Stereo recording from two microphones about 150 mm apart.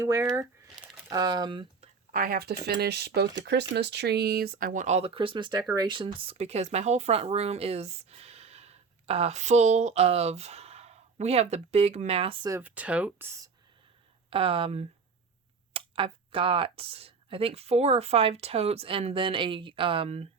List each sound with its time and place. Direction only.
0.0 s speech: 20° right (ahead or behind)
2.1 s speech: 75° right (ahead or behind); by 12.5 s 40° right (ahead or behind)
12.5 s speech: 15° right (ahead or behind)
14.3 s speech: 40° right (ahead or behind)